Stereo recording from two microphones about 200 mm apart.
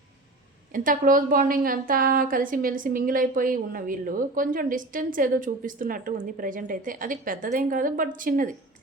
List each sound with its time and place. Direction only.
0.7 s a woman's voice: 45° right (ahead or behind)